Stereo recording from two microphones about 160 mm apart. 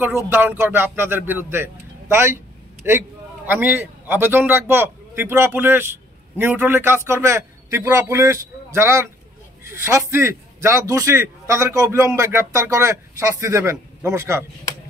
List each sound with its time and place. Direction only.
0.0 s a man's voice: 15° right (ahead or behind)